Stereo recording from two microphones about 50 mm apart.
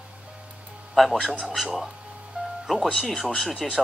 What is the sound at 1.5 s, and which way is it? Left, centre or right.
Speech, centre.